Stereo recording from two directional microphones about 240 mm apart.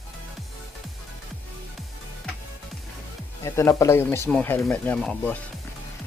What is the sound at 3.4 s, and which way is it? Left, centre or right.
Speech, centre.